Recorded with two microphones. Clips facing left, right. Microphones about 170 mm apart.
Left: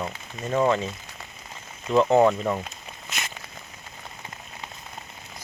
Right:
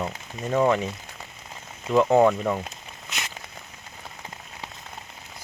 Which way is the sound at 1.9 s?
5° right (ahead or behind).